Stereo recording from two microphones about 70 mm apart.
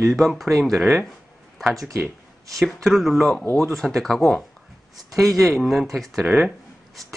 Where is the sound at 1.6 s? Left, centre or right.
Centre.